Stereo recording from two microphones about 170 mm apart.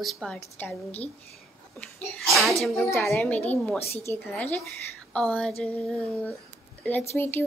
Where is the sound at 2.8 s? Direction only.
15° left (ahead or behind).